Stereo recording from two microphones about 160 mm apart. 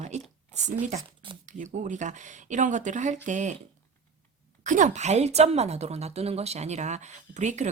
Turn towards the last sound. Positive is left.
turn(degrees=-50)  # may be behind; listen again after turning